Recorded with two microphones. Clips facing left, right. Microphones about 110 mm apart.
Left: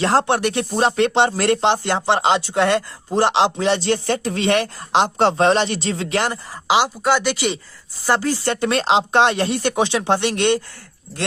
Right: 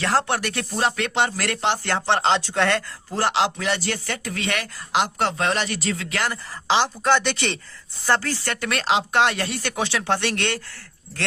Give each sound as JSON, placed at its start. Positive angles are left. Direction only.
{"t": 0.0, "sound": "speech", "side_deg": 25}
{"t": 6.7, "sound": "speech", "side_deg": 10}